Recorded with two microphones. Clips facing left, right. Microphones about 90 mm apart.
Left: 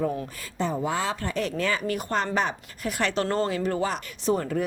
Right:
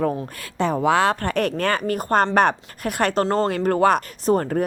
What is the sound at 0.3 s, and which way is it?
Speech, 70° right (ahead or behind).